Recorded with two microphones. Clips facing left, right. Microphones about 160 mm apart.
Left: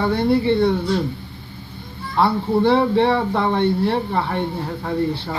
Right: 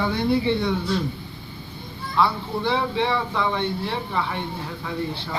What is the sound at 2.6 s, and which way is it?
Speech, 55° left (ahead or behind).